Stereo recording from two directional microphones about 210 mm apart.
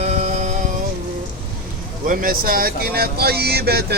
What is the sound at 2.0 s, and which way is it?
Speech, 40° right (ahead or behind).